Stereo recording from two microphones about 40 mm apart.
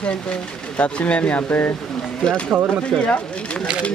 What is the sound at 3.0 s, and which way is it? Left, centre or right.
Speech, left.